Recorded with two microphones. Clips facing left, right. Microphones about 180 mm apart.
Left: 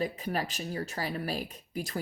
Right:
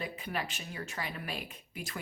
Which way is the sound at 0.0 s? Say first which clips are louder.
Left 6 dB; 40° left (ahead or behind).